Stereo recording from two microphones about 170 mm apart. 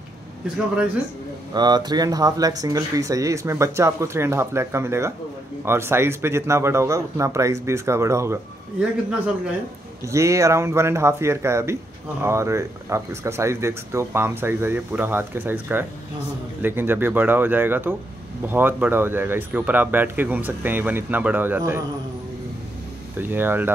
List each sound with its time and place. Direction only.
1.5 s speech: 25° right (ahead or behind)
10.0 s speech: 15° right (ahead or behind)
23.1 s speech: 10° right (ahead or behind)